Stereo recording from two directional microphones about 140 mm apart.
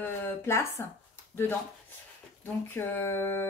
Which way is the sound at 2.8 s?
15° left (ahead or behind).